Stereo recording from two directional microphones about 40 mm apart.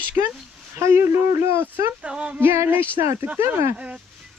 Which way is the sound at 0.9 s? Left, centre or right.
Right.